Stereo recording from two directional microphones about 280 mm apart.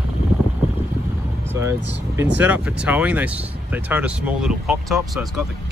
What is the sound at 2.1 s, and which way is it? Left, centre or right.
Speech, centre.